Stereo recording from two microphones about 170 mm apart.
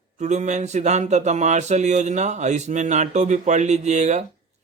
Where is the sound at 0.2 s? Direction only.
45° right (ahead or behind).